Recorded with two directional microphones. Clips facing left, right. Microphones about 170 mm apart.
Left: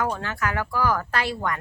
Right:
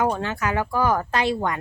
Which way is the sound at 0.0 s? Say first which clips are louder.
Right 3 dB; 20° right (ahead or behind).